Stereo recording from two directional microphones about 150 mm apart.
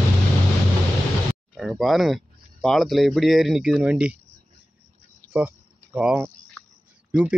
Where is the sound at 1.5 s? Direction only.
Centre (ahead or behind).